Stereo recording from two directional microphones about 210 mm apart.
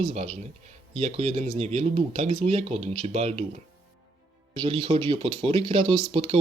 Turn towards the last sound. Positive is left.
turn(degrees=-25)  # may be behind; listen again after turning